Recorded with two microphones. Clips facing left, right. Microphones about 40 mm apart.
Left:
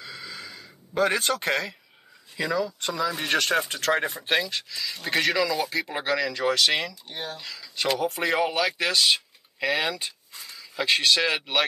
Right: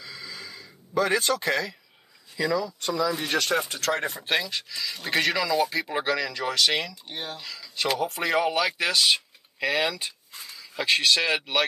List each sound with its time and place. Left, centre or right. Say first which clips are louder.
0.0 s a sound: left 1 dB; left
2.3 s speech: even; left
2.9 s speech: right 4 dB; centre
3.3 s speech: left 1 dB; left
3.9 s speech: left 2 dB; centre